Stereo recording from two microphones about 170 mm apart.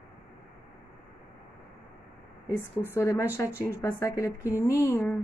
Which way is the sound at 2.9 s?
15° left (ahead or behind).